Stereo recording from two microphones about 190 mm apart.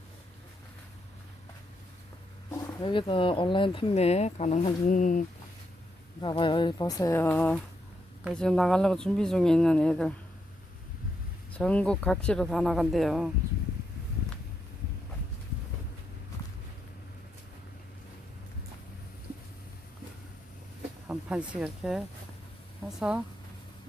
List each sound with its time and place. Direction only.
2.8 s speech: 25° left (ahead or behind); by 5.2 s 45° left (ahead or behind)
6.2 s speech: 25° left (ahead or behind); by 10.2 s 5° left (ahead or behind)
11.5 s speech: 5° left (ahead or behind)
21.1 s speech: 5° right (ahead or behind)